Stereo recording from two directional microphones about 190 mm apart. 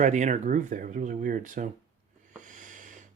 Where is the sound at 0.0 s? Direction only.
40° right (ahead or behind).